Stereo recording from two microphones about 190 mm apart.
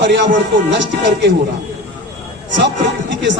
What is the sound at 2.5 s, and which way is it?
Speech, 70° right (ahead or behind).